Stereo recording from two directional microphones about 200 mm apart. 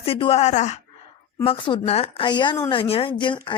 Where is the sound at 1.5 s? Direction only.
25° left (ahead or behind).